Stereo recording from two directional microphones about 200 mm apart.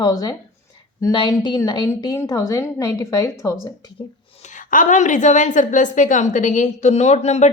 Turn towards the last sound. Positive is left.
turn(degrees=35)  # may be behind; listen again after turning